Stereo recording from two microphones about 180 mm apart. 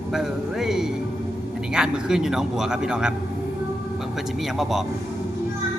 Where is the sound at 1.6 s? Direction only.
5° right (ahead or behind).